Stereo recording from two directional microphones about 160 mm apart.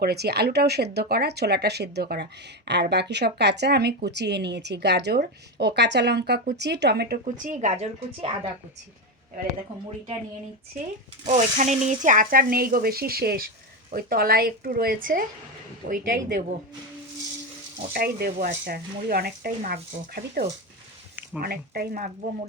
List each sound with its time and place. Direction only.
0.0 s speech: 85° right
7.3 s a woman's voice: 50° right (ahead or behind)
11.3 s speech: 50° right (ahead or behind)
17.9 s speech: 65° right (ahead or behind)
20.1 s speech: 80° right
21.4 s speech: 70° right (ahead or behind)